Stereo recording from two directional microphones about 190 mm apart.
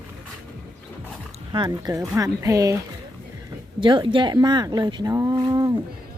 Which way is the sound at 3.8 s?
25° right (ahead or behind).